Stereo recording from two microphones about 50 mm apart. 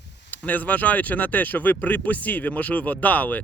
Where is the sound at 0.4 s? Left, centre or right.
Left.